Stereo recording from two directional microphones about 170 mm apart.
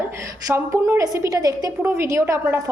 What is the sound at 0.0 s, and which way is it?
A woman's voice, 15° right (ahead or behind).